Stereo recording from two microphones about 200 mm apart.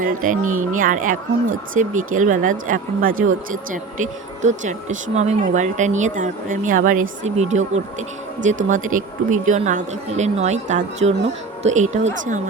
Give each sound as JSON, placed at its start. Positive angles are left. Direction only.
{"t": 0.0, "sound": "speech", "side_deg": -40}